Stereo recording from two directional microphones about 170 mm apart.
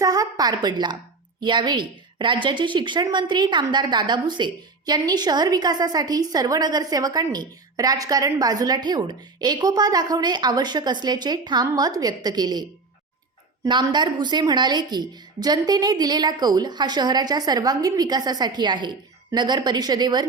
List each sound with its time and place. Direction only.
0.0 s a woman's voice: 20° right (ahead or behind)
13.7 s a woman's voice: 25° right (ahead or behind)